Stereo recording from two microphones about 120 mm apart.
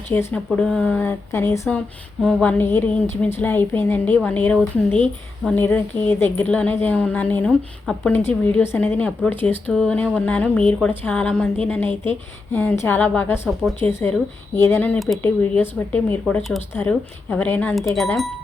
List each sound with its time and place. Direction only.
0.1 s a woman's voice: 20° left (ahead or behind)
8.2 s a woman's voice: 20° left (ahead or behind)
14.9 s speech: centre (ahead or behind)
15.2 s a woman's voice: 15° left (ahead or behind)
16.3 s a woman's voice: centre (ahead or behind)
17.9 s speech: centre (ahead or behind)